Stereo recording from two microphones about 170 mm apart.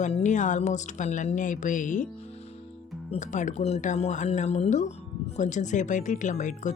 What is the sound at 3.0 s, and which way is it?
Speech, 45° left (ahead or behind).